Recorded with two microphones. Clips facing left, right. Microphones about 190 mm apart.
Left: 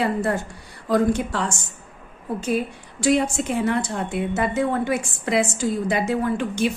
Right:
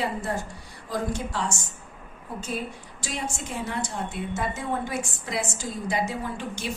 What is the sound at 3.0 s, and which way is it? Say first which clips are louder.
A woman's voice: left 14 dB; 70° left (ahead or behind).